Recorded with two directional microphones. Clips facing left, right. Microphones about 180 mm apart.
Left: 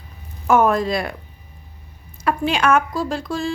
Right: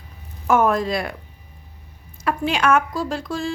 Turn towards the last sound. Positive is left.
turn(degrees=30)  # may be behind; listen again after turning